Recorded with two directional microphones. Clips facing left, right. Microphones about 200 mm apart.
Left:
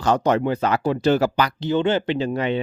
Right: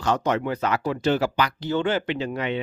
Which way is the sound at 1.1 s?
40° left (ahead or behind).